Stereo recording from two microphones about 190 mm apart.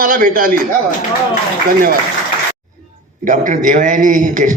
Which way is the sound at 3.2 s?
45° right (ahead or behind).